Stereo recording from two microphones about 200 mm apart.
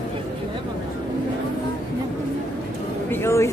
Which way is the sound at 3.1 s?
10° left (ahead or behind).